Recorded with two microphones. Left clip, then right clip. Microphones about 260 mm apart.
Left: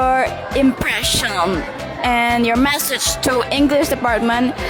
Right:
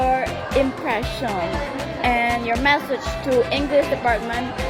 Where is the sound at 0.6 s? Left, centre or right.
Left.